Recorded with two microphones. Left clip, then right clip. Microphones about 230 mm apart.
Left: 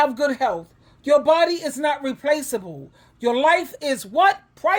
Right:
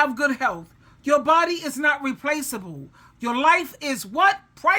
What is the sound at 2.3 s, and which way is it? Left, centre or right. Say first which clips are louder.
Speech: left 8 dB; centre.